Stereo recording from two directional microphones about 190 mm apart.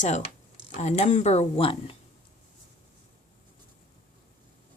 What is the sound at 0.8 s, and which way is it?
Speech, 35° left (ahead or behind).